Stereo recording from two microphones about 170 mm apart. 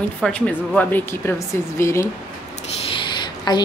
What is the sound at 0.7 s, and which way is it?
Speech, 10° left (ahead or behind).